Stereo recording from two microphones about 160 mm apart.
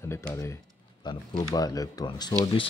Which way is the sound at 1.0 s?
30° left (ahead or behind).